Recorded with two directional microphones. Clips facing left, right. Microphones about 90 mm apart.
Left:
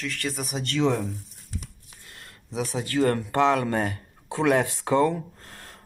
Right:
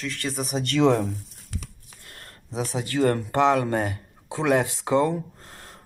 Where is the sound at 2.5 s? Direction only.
30° right (ahead or behind).